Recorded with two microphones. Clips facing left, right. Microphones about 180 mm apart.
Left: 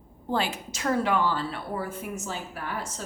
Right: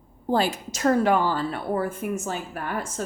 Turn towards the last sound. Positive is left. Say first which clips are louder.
# right 5 dB
turn(degrees=-50)  # may be behind; listen again after turning